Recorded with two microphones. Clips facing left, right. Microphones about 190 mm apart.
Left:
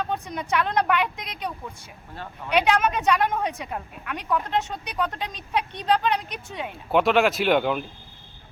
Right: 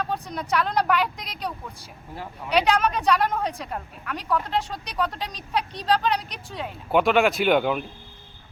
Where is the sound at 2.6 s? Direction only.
5° left (ahead or behind).